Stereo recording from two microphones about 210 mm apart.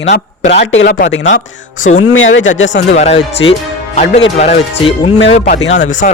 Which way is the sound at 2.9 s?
30° left (ahead or behind).